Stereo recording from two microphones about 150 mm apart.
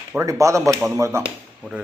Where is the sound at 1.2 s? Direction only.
5° right (ahead or behind).